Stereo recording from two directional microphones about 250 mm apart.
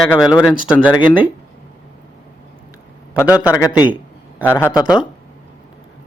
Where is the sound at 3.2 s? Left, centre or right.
Centre.